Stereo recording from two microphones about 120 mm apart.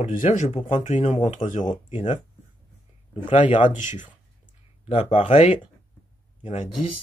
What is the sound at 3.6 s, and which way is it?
Speech, 90° left.